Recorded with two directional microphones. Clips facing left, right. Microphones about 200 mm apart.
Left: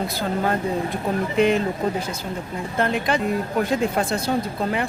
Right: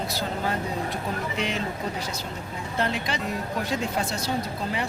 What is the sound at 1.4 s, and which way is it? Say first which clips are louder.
Speech: left 14 dB; 50° left (ahead or behind).